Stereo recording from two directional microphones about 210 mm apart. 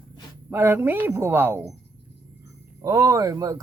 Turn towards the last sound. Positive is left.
turn(degrees=-15)  # may be behind; listen again after turning